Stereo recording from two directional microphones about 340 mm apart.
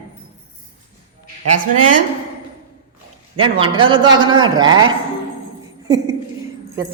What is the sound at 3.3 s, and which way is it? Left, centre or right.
A man's voice, centre.